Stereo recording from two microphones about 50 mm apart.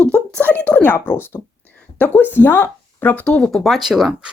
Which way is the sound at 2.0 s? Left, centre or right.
Left.